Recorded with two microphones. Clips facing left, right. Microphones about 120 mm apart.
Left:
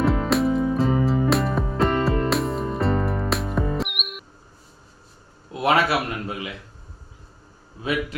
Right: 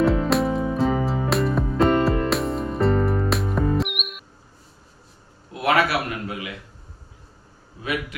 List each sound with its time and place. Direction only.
0.0 s music: centre (ahead or behind)
5.6 s a man's voice: 25° left (ahead or behind)